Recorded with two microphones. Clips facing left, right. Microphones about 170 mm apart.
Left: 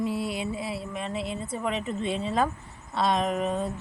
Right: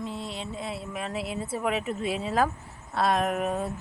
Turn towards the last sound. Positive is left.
turn(degrees=-5)  # may be behind; listen again after turning